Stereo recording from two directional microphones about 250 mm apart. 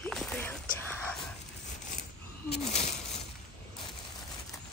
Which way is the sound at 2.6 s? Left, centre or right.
Left.